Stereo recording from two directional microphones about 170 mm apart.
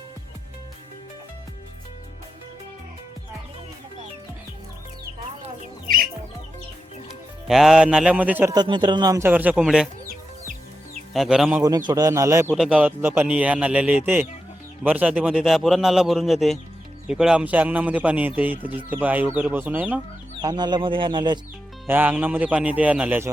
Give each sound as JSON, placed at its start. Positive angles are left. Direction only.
{"t": 7.4, "sound": "a man's voice", "side_deg": 0}
{"t": 8.5, "sound": "a man's voice", "side_deg": -25}
{"t": 10.1, "sound": "chicken", "side_deg": -50}
{"t": 11.1, "sound": "a man's voice", "side_deg": 0}
{"t": 11.9, "sound": "a man's voice", "side_deg": -20}
{"t": 12.5, "sound": "a man's voice", "side_deg": -5}
{"t": 20.4, "sound": "speech", "side_deg": -25}
{"t": 21.8, "sound": "a man's voice", "side_deg": -10}